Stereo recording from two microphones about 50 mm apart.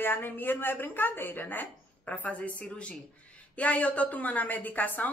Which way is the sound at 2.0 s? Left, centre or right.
Left.